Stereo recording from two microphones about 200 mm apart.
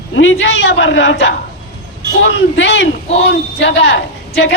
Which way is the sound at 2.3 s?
60° left (ahead or behind).